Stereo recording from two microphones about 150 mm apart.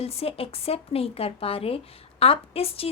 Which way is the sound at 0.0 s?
40° left (ahead or behind).